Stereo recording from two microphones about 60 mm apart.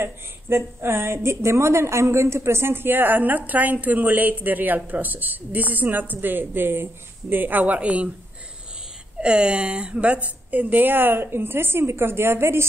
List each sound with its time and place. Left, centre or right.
0.0 s a woman's voice: right
9.2 s a woman's voice: centre; by 12.6 s right